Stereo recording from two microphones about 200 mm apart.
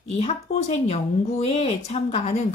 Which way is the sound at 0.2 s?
30° left (ahead or behind).